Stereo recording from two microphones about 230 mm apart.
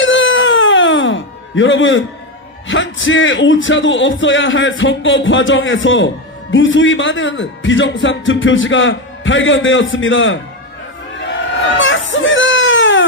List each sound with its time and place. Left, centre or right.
0.0 s a sound: left
2.6 s a man's voice: left
11.8 s baby cry: left